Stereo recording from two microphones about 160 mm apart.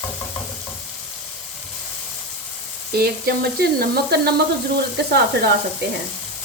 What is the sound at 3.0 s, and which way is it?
Frying, 75° right (ahead or behind).